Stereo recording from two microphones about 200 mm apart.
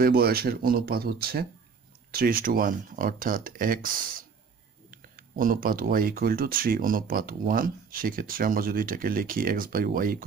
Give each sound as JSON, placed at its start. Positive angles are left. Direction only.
{"t": 0.0, "sound": "speech", "side_deg": -50}
{"t": 4.9, "sound": "speech", "side_deg": -45}